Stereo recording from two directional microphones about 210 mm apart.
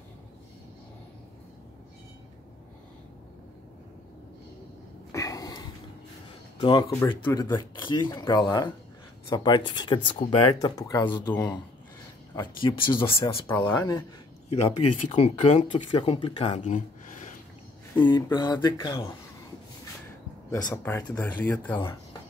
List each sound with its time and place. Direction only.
5.1 s a sound: 15° left (ahead or behind)
6.6 s speech: 20° left (ahead or behind)
12.4 s speech: 25° left (ahead or behind)
13.5 s speech: 10° left (ahead or behind)
14.5 s speech: 30° left (ahead or behind)
18.0 s speech: 20° left (ahead or behind)
20.7 s speech: 10° left (ahead or behind)